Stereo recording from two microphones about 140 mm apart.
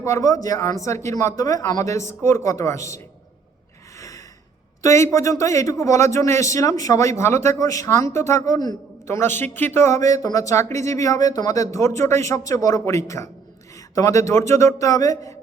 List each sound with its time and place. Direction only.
0.0 s speech: 25° left (ahead or behind)
3.9 s gasp: 25° left (ahead or behind)
4.8 s speech: 20° left (ahead or behind)